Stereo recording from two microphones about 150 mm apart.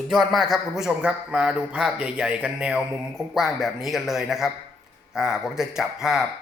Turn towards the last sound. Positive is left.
turn(degrees=0)  # may be behind; listen again after turning